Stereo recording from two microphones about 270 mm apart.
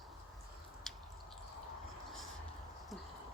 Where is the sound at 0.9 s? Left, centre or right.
Centre.